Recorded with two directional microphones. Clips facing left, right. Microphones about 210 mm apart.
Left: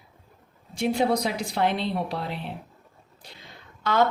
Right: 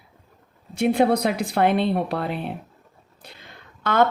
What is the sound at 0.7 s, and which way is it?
Speech, 55° right (ahead or behind).